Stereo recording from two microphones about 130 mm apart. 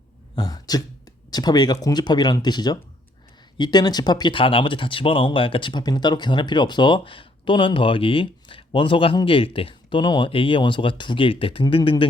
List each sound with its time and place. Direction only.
0.3 s speech: 30° left (ahead or behind)